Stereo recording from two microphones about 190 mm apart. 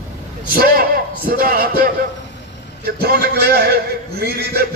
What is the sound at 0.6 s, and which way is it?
A man's voice, 50° right (ahead or behind).